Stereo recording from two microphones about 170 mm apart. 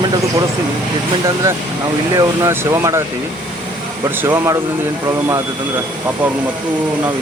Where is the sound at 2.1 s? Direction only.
15° right (ahead or behind).